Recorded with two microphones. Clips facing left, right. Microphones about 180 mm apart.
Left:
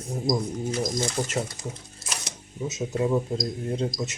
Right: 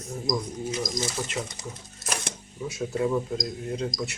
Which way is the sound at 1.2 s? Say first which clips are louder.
Left 4 dB; 40° left (ahead or behind).